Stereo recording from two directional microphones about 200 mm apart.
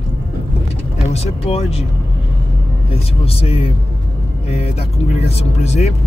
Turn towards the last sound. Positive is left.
turn(degrees=35)  # may be behind; listen again after turning